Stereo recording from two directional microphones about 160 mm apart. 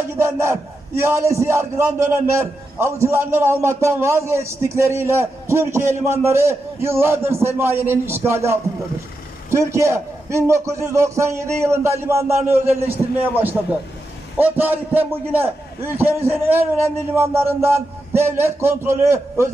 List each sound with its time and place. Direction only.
0.2 s a man's voice: 15° right (ahead or behind)